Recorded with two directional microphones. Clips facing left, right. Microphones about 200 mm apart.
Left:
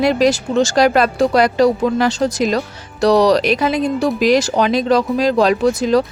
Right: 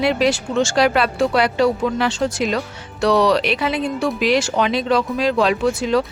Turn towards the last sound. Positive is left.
turn(degrees=40)  # may be behind; listen again after turning